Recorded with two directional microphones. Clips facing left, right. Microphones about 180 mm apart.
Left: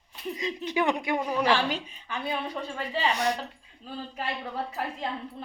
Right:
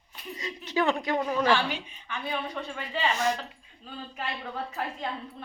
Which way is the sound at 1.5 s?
35° left (ahead or behind).